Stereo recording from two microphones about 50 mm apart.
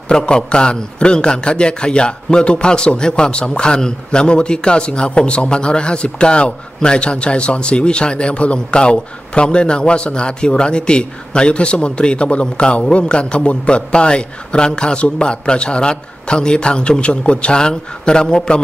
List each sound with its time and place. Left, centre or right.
0.1 s a man's voice: centre